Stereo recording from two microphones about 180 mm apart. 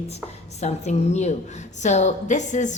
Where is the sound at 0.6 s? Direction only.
40° left (ahead or behind).